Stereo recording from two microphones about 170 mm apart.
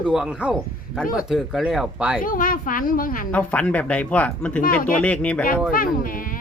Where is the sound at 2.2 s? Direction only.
55° left (ahead or behind).